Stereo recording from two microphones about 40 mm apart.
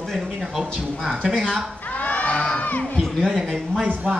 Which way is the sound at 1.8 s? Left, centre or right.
Left.